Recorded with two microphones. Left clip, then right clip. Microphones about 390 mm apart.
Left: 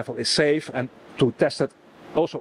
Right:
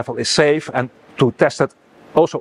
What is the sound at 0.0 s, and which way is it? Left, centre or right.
Speech, right.